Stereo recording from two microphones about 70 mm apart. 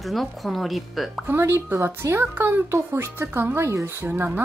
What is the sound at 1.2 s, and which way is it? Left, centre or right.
Speech, right.